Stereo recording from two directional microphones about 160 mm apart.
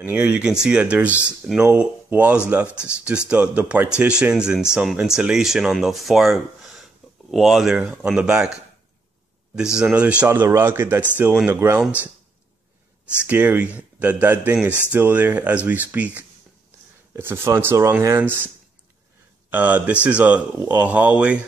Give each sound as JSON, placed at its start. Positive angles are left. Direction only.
{"t": 0.0, "sound": "speech", "side_deg": -10}
{"t": 9.6, "sound": "speech", "side_deg": -5}
{"t": 13.2, "sound": "speech", "side_deg": -10}
{"t": 19.5, "sound": "speech", "side_deg": -10}